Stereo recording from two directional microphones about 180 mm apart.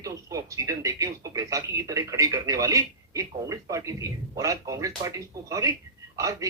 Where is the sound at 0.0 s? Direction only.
20° right (ahead or behind).